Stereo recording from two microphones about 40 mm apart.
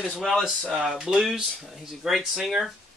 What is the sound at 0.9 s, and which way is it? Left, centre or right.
Speech, centre.